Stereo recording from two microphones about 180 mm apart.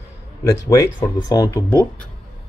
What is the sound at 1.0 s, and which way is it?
Speech, 25° left (ahead or behind).